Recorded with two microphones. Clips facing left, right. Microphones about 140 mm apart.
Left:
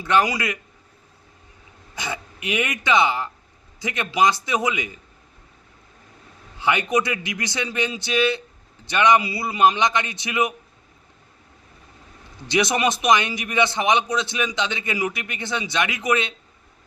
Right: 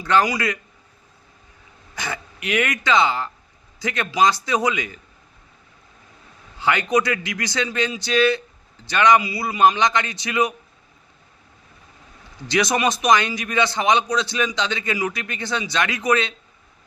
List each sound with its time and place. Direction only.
0.0 s a man's voice: 20° left (ahead or behind)
2.0 s a man's voice: 20° left (ahead or behind)
6.6 s a man's voice: 20° left (ahead or behind)
12.5 s a man's voice: 25° left (ahead or behind)